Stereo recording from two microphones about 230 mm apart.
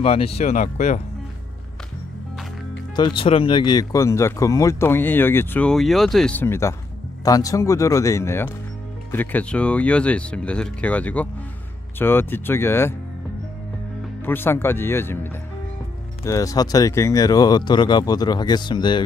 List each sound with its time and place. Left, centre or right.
0.0 s speech: left
3.0 s speech: left
14.2 s speech: centre
16.3 s speech: centre